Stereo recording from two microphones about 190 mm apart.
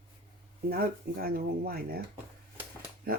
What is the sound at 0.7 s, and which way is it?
Speech, 50° right (ahead or behind).